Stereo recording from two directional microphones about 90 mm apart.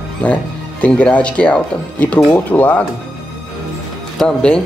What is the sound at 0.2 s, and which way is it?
Speech, 15° left (ahead or behind).